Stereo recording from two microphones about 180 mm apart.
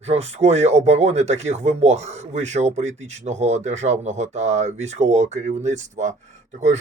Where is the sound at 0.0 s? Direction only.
35° right (ahead or behind).